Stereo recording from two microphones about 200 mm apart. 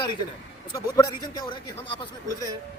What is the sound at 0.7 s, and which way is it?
Speech, 20° left (ahead or behind).